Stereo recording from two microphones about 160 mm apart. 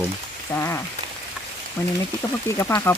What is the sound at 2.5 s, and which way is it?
Speech, 15° left (ahead or behind).